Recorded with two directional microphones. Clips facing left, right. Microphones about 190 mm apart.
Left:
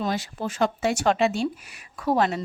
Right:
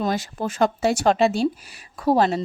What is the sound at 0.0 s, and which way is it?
Speech, 45° right (ahead or behind).